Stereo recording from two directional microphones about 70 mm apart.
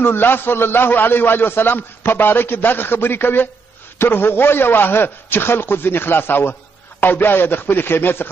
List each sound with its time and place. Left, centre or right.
0.0 s a man's voice: left